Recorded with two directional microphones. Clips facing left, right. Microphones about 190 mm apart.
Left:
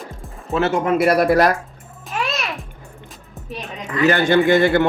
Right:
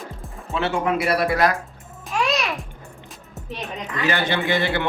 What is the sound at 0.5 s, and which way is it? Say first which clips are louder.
Speech: left 4 dB; 45° left (ahead or behind).